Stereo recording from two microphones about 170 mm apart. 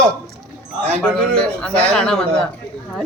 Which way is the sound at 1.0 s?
5° left (ahead or behind).